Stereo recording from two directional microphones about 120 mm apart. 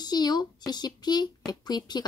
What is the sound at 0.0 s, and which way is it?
Speech, 35° left (ahead or behind).